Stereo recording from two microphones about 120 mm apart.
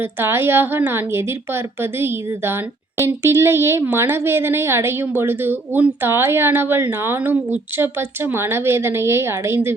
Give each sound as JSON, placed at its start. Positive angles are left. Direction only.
{"t": 0.0, "sound": "a woman's voice", "side_deg": -20}